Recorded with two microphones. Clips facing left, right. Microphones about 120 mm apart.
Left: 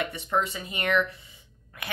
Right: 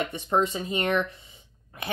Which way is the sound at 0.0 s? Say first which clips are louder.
Right 3 dB; 25° right (ahead or behind).